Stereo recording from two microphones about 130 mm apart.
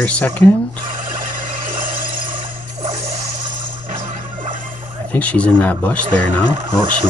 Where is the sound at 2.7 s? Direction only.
60° right (ahead or behind).